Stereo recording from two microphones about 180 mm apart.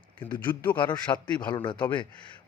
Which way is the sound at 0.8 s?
25° left (ahead or behind).